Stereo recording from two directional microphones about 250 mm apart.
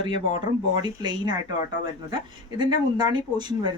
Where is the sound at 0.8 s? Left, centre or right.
Centre.